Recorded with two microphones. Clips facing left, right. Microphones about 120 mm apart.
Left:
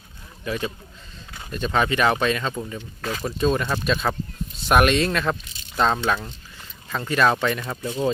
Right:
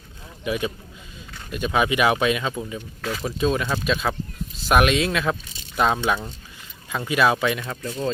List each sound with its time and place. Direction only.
0.4 s speech: 10° right (ahead or behind)
7.6 s speech: 5° left (ahead or behind)
7.9 s speech: 20° left (ahead or behind)